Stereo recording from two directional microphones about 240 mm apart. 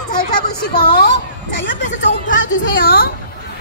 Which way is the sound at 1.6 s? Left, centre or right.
Left.